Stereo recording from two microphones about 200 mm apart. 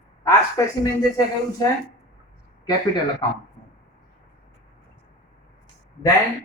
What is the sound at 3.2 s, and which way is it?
Speech, 20° left (ahead or behind).